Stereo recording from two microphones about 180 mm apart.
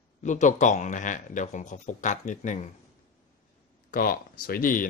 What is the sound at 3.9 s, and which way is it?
Speech, 50° left (ahead or behind).